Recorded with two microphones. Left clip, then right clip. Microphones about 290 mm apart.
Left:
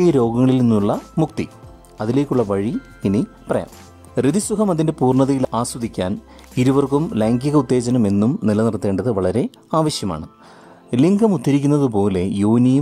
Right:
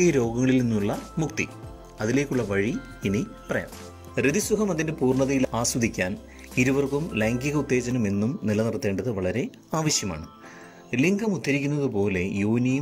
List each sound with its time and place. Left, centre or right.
0.0 s speech: centre